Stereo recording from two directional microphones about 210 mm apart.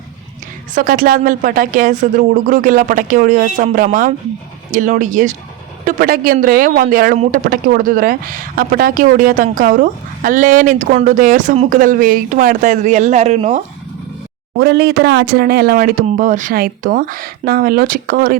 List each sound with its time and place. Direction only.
0.7 s speech: 40° right (ahead or behind)
14.6 s speech: 50° right (ahead or behind)